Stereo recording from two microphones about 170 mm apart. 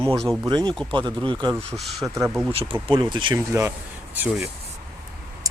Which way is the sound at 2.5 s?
35° right (ahead or behind).